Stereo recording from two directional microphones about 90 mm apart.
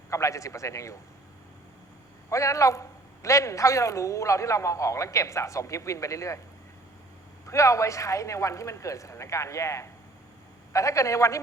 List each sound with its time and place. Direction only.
0.1 s speech: 35° left (ahead or behind)
2.3 s speech: 35° left (ahead or behind)
7.4 s speech: 35° left (ahead or behind)